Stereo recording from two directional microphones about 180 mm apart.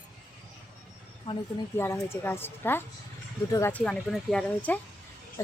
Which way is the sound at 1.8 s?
15° left (ahead or behind).